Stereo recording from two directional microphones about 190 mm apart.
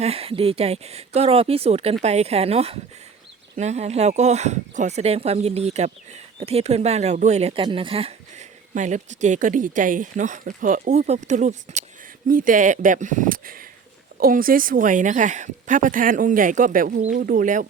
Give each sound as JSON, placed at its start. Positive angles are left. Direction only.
{"t": 0.0, "sound": "speech", "side_deg": -30}